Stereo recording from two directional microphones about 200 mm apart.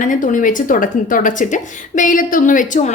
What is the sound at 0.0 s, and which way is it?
A woman's voice, 40° left (ahead or behind).